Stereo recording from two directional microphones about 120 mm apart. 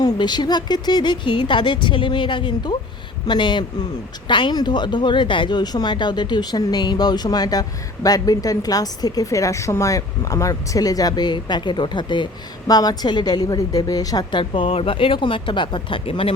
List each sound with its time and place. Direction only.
0.0 s speech: 40° left (ahead or behind)